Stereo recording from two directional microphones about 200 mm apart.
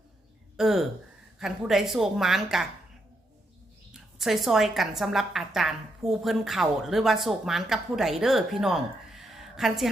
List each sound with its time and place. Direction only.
0.5 s a woman's voice: centre (ahead or behind)
4.2 s a woman's voice: centre (ahead or behind)